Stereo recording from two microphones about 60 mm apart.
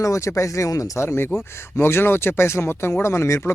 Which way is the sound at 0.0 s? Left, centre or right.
Left.